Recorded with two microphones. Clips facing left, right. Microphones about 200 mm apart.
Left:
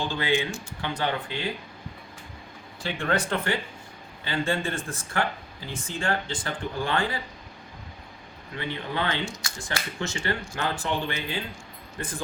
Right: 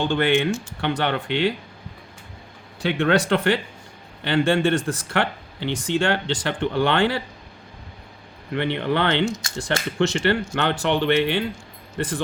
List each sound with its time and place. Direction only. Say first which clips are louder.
0.0 s speech: right 7 dB; 70° right (ahead or behind)
2.8 s speech: right 7 dB; 75° right (ahead or behind)
8.5 s speech: right 8 dB; 70° right (ahead or behind)